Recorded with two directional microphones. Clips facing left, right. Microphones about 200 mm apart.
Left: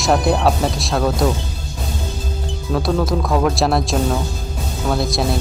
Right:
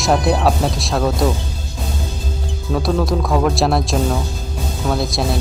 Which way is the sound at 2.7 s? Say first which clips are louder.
Even; centre (ahead or behind).